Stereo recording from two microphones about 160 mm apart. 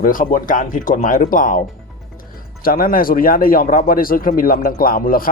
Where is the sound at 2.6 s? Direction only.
65° left (ahead or behind).